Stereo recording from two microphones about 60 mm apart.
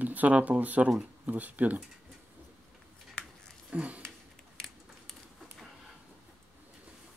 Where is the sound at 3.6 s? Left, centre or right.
Right.